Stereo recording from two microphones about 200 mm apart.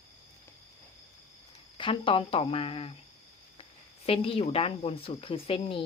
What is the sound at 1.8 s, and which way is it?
Speech, 25° left (ahead or behind).